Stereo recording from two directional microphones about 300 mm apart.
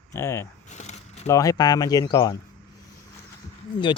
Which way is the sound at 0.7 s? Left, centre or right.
Left.